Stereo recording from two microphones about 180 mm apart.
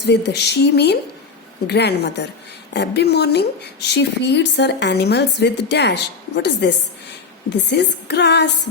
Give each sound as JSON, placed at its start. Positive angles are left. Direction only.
{"t": 0.0, "sound": "a woman's voice", "side_deg": 70}